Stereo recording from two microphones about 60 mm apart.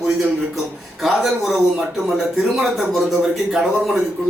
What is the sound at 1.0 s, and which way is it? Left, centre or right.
Speech, centre.